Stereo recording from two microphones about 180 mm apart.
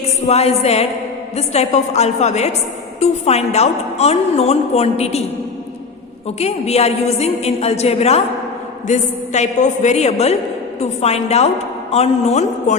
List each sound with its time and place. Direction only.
0.3 s a woman's voice: 35° left (ahead or behind)
6.4 s a woman's voice: 35° left (ahead or behind)